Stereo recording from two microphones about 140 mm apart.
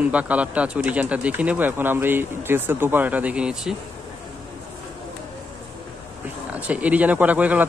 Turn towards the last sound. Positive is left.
turn(degrees=-10)  # may be behind; listen again after turning